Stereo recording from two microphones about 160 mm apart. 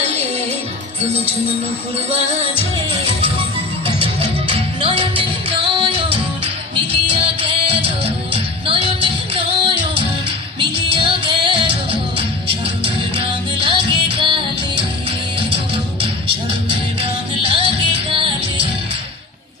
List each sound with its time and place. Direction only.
3.8 s music: 35° right (ahead or behind)
7.1 s music: 35° right (ahead or behind)
17.5 s music: 35° right (ahead or behind)